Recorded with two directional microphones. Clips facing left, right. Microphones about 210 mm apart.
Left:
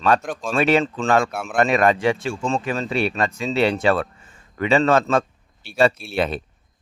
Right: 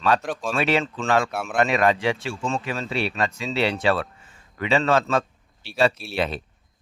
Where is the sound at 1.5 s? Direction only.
45° left (ahead or behind).